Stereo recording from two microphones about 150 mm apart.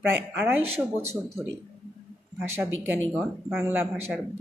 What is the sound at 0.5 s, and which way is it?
Speech, 15° right (ahead or behind).